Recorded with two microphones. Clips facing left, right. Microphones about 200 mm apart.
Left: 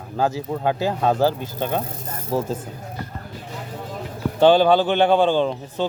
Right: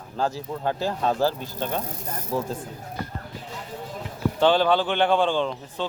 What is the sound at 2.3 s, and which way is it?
Speech, 30° left (ahead or behind).